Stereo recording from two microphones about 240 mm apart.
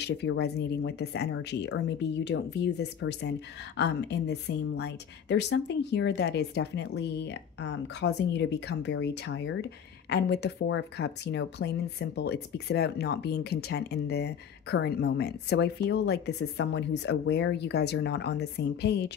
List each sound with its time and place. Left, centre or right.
0.0 s speech: left